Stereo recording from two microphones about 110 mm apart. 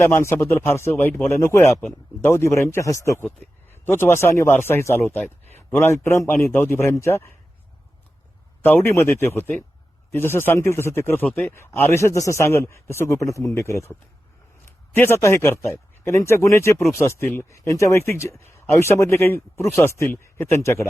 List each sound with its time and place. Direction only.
0.0 s speech: 25° left (ahead or behind)
8.6 s speech: 20° left (ahead or behind)
14.9 s speech: 20° left (ahead or behind)